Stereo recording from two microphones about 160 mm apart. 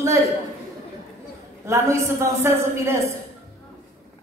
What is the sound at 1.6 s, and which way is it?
A woman's voice, 20° right (ahead or behind).